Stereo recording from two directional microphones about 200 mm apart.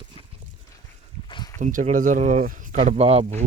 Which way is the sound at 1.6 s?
40° right (ahead or behind).